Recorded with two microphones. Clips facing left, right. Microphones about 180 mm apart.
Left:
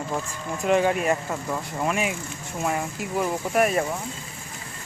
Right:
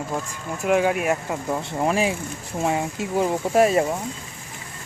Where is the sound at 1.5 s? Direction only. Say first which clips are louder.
Right 4 dB; 30° right (ahead or behind).